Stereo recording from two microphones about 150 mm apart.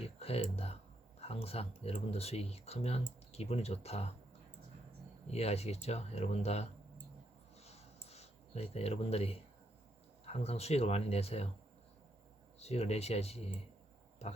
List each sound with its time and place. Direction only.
0.0 s speech: 40° left (ahead or behind)
5.3 s speech: 45° left (ahead or behind)
7.6 s a sound: 45° left (ahead or behind)
8.0 s speech: 45° left (ahead or behind)
12.5 s speech: 45° left (ahead or behind)